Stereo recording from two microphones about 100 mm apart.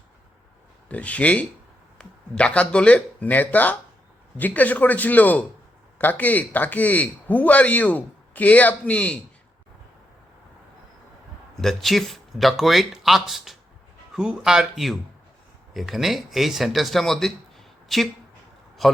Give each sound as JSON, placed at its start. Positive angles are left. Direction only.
{"t": 0.9, "sound": "speech", "side_deg": 15}
{"t": 11.5, "sound": "a man's voice", "side_deg": 0}